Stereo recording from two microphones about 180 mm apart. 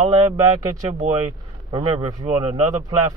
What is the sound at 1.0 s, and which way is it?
Speech, 30° right (ahead or behind).